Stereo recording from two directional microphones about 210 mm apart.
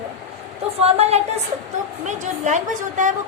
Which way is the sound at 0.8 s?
30° right (ahead or behind).